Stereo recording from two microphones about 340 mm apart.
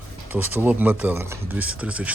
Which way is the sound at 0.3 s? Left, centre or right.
Centre.